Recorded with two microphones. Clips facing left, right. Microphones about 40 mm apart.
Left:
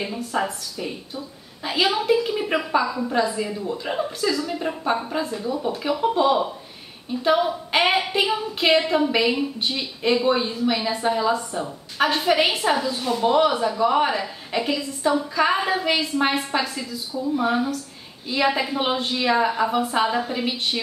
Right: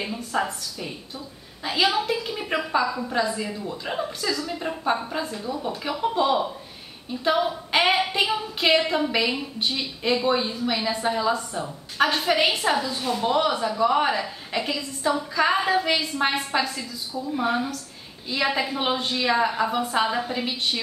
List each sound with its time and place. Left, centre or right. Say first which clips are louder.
0.0 s speech: left 1 dB; centre